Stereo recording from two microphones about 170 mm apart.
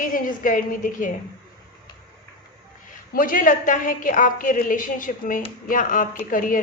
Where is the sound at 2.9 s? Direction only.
55° left (ahead or behind).